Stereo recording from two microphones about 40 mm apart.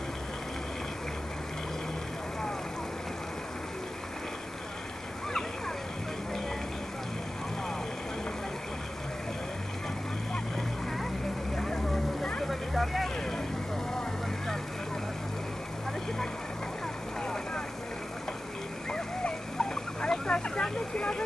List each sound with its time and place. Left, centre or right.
11.5 s vehicle: centre
18.9 s dog: centre